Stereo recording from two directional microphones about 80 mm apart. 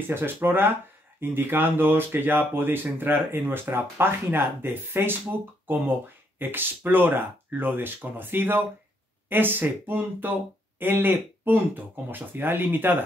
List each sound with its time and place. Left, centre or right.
0.1 s speech: right